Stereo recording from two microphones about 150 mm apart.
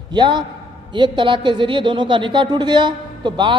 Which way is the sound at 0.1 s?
30° right (ahead or behind).